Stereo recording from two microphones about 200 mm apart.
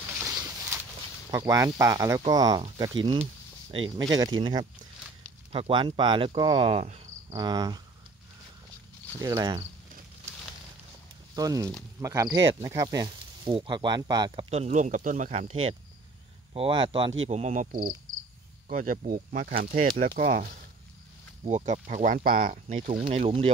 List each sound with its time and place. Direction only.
0.2 s a sound: 15° right (ahead or behind)
1.3 s speech: 15° right (ahead or behind)
9.2 s speech: 20° right (ahead or behind)
11.3 s speech: 20° right (ahead or behind)
14.5 s speech: 35° right (ahead or behind)
17.3 s speech: 35° right (ahead or behind)